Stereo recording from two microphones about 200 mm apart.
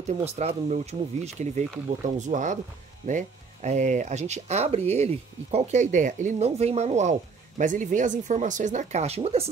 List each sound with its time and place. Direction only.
0.2 s speech: 35° right (ahead or behind)